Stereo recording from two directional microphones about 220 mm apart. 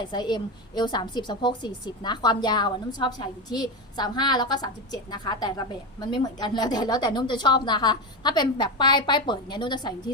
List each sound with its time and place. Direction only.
0.0 s a woman's voice: 20° left (ahead or behind)